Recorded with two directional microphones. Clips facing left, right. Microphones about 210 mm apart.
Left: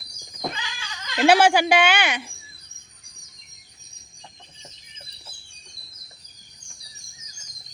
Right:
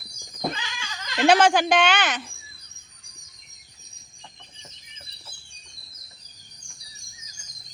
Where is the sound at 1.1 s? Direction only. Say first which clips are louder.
Left 1 dB; 10° left (ahead or behind).